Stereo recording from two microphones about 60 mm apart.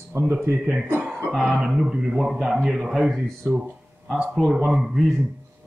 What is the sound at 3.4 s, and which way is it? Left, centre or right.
Speech, right.